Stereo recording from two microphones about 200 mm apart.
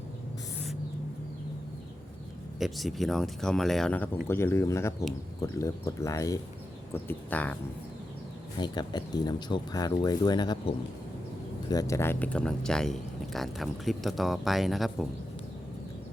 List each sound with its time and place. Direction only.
2.6 s speech: centre (ahead or behind)
8.5 s speech: 20° left (ahead or behind); by 15.0 s centre (ahead or behind)